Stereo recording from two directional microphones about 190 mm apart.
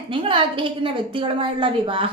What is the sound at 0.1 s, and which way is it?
A woman's voice, 25° right (ahead or behind).